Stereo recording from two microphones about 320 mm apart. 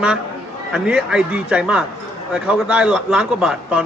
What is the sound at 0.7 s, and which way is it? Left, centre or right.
Speech, centre.